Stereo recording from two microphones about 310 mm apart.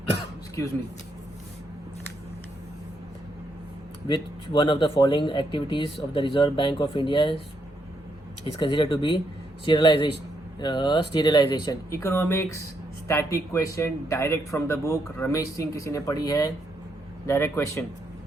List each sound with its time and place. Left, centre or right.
0.1 s throat clearing: centre
4.1 s speech: centre
8.5 s speech: centre